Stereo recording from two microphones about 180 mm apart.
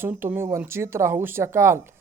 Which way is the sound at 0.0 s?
10° right (ahead or behind).